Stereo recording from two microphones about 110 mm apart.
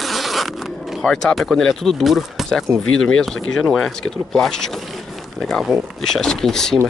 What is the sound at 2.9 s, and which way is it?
Speech, 5° left (ahead or behind).